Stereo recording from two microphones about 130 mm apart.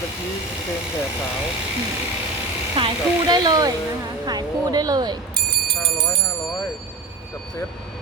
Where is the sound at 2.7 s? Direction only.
40° right (ahead or behind).